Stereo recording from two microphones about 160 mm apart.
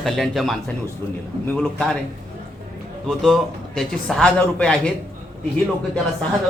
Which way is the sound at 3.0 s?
Centre (ahead or behind).